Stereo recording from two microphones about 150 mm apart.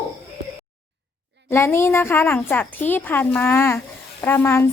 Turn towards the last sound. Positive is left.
turn(degrees=15)  # may be behind; listen again after turning